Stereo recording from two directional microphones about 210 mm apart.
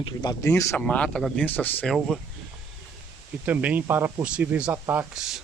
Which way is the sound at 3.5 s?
10° right (ahead or behind).